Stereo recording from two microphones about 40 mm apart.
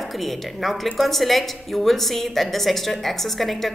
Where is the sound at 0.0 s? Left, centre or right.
Centre.